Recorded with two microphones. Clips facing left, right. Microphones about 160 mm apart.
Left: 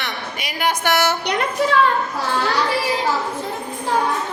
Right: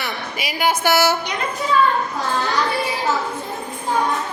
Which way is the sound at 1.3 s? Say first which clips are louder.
Left 3 dB; 70° left (ahead or behind).